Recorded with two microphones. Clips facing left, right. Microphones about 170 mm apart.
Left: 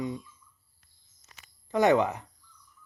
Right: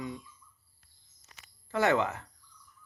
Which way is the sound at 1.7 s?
15° left (ahead or behind).